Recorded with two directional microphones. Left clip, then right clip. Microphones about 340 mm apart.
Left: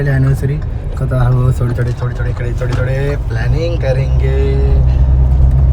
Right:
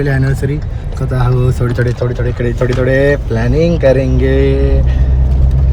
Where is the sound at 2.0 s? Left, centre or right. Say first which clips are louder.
Right 7 dB; centre.